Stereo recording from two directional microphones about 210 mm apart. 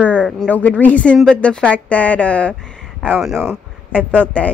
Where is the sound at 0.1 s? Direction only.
5° right (ahead or behind).